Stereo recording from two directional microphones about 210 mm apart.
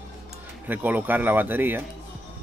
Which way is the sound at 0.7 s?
10° right (ahead or behind).